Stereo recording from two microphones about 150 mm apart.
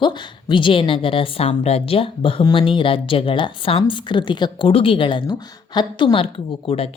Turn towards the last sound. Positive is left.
turn(degrees=40)  # may be behind; listen again after turning